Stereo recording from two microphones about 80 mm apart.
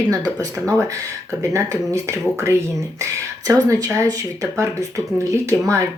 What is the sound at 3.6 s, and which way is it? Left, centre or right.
Speech, right.